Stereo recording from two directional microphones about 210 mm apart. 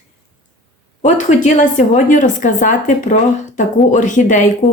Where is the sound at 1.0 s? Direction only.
35° left (ahead or behind).